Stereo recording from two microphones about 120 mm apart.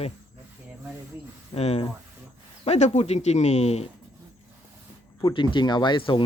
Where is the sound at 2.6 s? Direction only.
70° left (ahead or behind).